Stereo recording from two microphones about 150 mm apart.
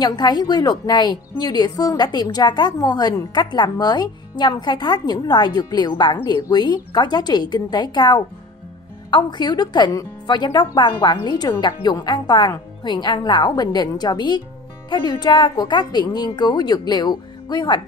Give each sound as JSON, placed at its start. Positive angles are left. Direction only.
{"t": 0.0, "sound": "a woman's voice", "side_deg": 30}